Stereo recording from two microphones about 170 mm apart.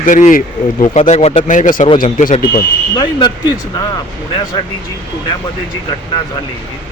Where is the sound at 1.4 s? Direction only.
50° left (ahead or behind).